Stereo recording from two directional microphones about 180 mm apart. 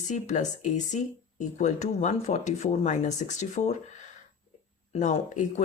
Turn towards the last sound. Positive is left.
turn(degrees=45)  # may be behind; listen again after turning